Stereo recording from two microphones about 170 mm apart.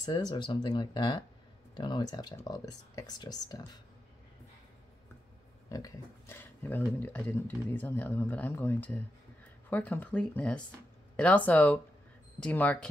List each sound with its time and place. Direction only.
0.0 s speech: 25° left (ahead or behind)
5.7 s speech: 20° left (ahead or behind)